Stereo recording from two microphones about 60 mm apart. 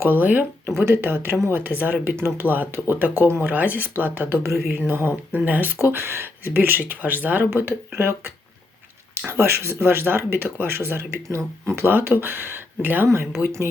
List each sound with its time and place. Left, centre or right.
0.0 s speech: right
0.8 s speech: right
4.4 s speech: right
5.3 s speech: right
5.9 s speech: right
7.5 s speech: right
11.8 s speech: right